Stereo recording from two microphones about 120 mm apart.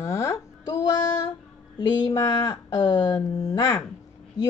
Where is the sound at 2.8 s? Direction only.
40° left (ahead or behind).